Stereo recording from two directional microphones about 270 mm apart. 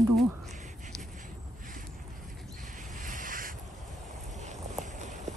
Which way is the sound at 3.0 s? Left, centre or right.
Right.